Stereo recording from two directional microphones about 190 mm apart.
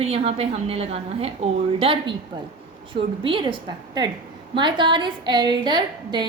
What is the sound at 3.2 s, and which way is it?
A woman's voice, 25° right (ahead or behind).